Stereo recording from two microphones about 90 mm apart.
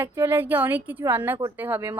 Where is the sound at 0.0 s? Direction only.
25° right (ahead or behind).